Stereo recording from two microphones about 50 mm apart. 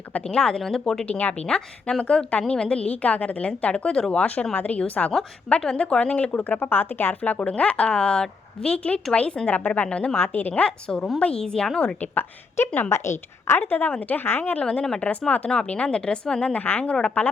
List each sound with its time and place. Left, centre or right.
0.1 s a woman's voice: centre
6.6 s speech: left
10.2 s a woman's voice: left
10.6 s a woman's voice: left
12.9 s a woman's voice: left
13.6 s a woman's voice: left
14.3 s speech: left
14.6 s speech: left
16.6 s a woman's voice: left
16.8 s speech: left